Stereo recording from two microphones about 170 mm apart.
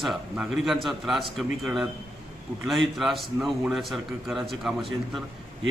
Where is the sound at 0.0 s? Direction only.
Centre (ahead or behind).